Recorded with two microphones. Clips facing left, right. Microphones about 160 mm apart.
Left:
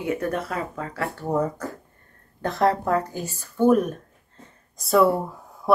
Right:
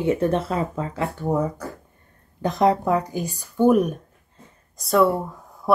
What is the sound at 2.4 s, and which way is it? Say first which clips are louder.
Speech: right 2 dB; 15° right (ahead or behind).